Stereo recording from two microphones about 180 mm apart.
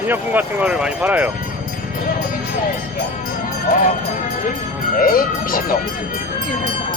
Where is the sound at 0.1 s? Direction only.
10° right (ahead or behind).